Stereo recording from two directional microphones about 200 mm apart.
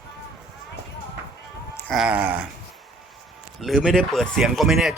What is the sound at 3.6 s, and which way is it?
Speech, centre (ahead or behind).